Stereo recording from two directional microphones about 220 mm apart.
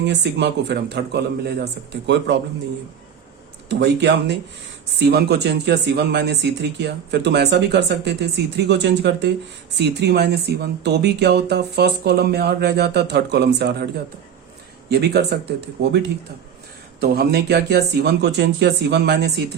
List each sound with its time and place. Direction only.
0.0 s speech: 50° right (ahead or behind)
3.8 s speech: 50° right (ahead or behind)
14.8 s speech: 50° right (ahead or behind)